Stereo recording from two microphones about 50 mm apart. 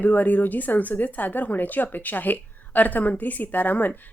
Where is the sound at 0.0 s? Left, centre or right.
Left.